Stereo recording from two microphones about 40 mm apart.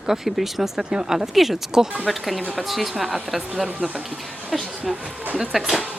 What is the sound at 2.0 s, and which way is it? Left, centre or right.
A woman's voice, centre.